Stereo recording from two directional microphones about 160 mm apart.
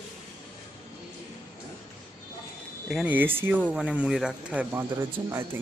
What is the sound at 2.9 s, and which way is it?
Speech, 5° right (ahead or behind).